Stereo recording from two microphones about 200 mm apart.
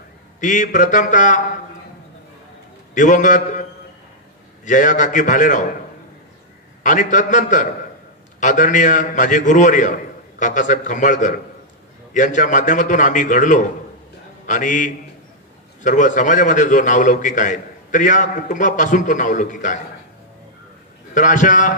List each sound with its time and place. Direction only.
0.4 s a man's voice: 40° left (ahead or behind)
2.9 s a man's voice: 40° left (ahead or behind)
4.6 s a man's voice: 40° left (ahead or behind)
6.8 s a man's voice: 40° left (ahead or behind)
21.1 s a man's voice: 40° left (ahead or behind)